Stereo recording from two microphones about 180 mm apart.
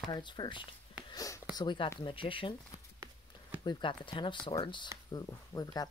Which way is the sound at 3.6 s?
25° left (ahead or behind).